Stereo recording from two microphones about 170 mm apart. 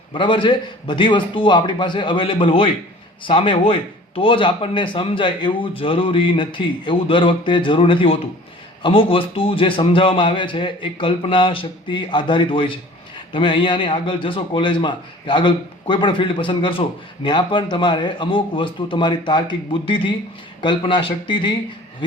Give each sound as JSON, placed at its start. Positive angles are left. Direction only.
{"t": 0.1, "sound": "a man's voice", "side_deg": 30}